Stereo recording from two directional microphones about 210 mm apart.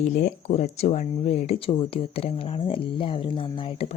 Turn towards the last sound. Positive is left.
turn(degrees=25)  # may be behind; listen again after turning